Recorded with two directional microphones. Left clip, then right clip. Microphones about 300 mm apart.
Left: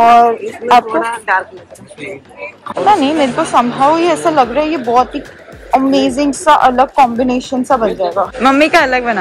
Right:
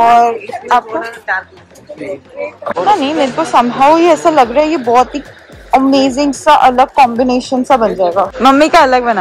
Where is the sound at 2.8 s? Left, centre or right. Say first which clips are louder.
Left 1 dB; centre.